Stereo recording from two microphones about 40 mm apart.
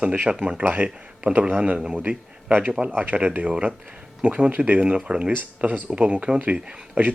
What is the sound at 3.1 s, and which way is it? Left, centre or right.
Speech, right.